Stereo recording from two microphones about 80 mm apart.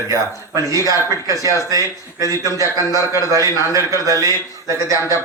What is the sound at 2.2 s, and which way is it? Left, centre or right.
A man's voice, left.